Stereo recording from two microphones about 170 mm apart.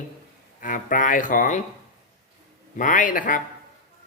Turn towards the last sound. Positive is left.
turn(degrees=50)  # may be behind; listen again after turning